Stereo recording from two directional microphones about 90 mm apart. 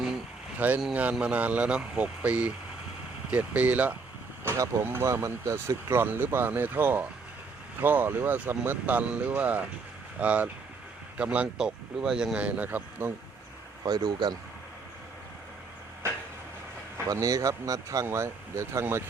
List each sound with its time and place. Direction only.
0.6 s speech: 15° right (ahead or behind)
4.5 s speech: 40° right (ahead or behind)
4.9 s speech: 25° right (ahead or behind)
13.8 s speech: 50° right (ahead or behind)
17.1 s speech: 40° right (ahead or behind)